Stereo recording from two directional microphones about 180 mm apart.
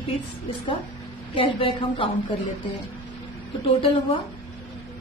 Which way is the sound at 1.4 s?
30° left (ahead or behind).